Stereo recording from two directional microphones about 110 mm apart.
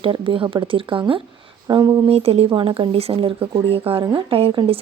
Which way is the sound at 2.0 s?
65° right (ahead or behind).